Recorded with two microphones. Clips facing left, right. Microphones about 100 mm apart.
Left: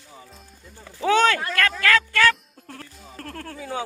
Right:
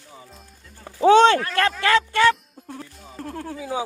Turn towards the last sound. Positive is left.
turn(degrees=-10)  # may be behind; listen again after turning